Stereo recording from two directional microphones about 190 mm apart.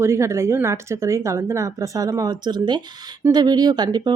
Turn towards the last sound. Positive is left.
turn(degrees=-20)  # may be behind; listen again after turning